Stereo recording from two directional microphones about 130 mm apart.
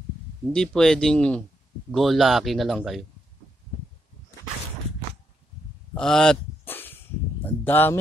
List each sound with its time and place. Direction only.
0.5 s a man's voice: 5° left (ahead or behind)
5.9 s speech: 5° left (ahead or behind)
6.6 s a sound: 15° left (ahead or behind)